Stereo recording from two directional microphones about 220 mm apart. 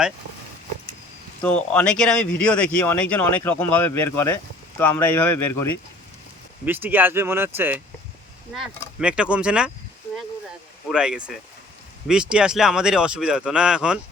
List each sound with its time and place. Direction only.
1.4 s speech: 5° left (ahead or behind)
6.7 s speech: 10° right (ahead or behind)
10.8 s speech: 5° right (ahead or behind)